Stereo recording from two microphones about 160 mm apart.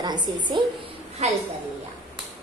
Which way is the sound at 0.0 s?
30° right (ahead or behind).